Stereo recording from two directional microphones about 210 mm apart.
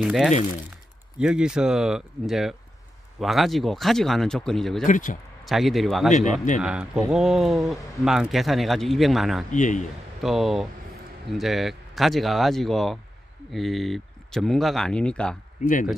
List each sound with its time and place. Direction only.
0.0 s speech: centre (ahead or behind)
4.8 s speech: 40° left (ahead or behind)
5.4 s speech: centre (ahead or behind)
9.5 s speech: 35° left (ahead or behind)
10.2 s speech: centre (ahead or behind)
15.6 s speech: 40° left (ahead or behind)